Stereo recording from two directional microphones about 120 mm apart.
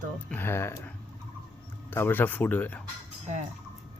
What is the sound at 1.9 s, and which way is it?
Speech, 20° left (ahead or behind).